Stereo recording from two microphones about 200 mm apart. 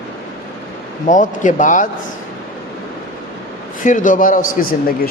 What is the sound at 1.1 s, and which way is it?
Speech, 40° left (ahead or behind).